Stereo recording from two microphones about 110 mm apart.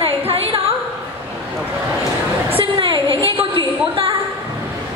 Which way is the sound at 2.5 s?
50° right (ahead or behind).